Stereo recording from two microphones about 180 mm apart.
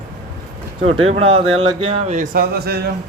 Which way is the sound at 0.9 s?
35° right (ahead or behind).